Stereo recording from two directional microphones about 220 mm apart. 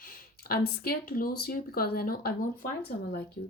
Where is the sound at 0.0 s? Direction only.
40° left (ahead or behind).